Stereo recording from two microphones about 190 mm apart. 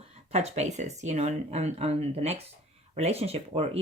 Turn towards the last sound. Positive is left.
turn(degrees=-30)  # may be behind; listen again after turning